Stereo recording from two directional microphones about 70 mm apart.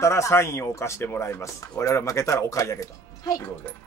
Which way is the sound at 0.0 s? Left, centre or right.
Left.